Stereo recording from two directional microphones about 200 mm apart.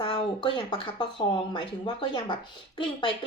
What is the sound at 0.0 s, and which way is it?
Speech, 25° left (ahead or behind).